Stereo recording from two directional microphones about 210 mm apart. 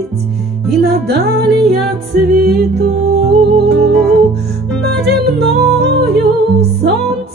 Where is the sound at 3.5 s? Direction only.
50° right (ahead or behind).